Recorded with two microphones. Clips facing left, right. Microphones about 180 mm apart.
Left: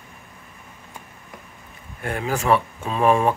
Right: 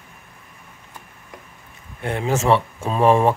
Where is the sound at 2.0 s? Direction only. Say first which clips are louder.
Right 3 dB; 20° right (ahead or behind).